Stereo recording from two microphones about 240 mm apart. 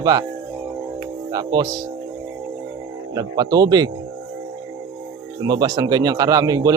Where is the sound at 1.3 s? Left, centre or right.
Centre.